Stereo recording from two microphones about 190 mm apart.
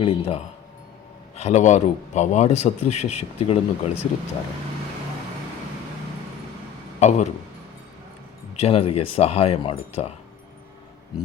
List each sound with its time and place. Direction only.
0.0 s speech: 30° left (ahead or behind)
7.0 s speech: 40° left (ahead or behind)
8.5 s speech: 35° left (ahead or behind)